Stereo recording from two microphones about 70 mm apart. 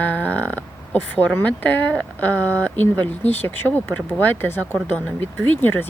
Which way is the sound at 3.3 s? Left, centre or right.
Left.